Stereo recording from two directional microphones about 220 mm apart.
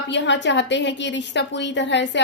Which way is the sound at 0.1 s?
55° left (ahead or behind).